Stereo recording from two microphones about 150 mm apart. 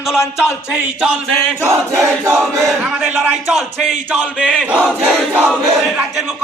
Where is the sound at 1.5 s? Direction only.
20° right (ahead or behind).